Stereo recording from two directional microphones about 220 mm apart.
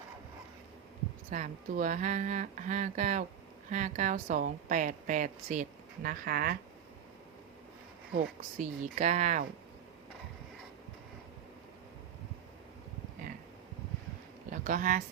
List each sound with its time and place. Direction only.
1.3 s a woman's voice: 35° right (ahead or behind)
8.5 s a woman's voice: 35° right (ahead or behind)
14.5 s speech: 35° right (ahead or behind)